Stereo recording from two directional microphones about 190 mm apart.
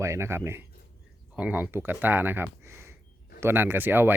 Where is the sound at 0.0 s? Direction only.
15° right (ahead or behind).